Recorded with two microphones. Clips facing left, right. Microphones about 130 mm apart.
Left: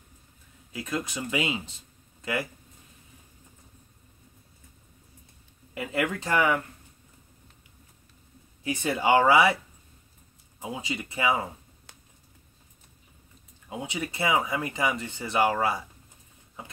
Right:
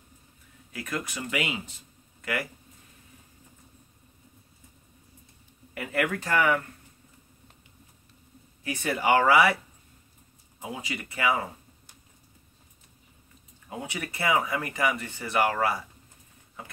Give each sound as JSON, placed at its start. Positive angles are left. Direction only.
{"t": 0.7, "sound": "speech", "side_deg": 20}
{"t": 5.8, "sound": "speech", "side_deg": 20}
{"t": 8.6, "sound": "speech", "side_deg": 20}
{"t": 10.6, "sound": "speech", "side_deg": 20}
{"t": 13.7, "sound": "speech", "side_deg": 20}